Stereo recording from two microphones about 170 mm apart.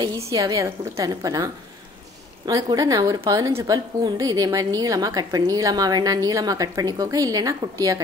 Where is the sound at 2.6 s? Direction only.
25° right (ahead or behind).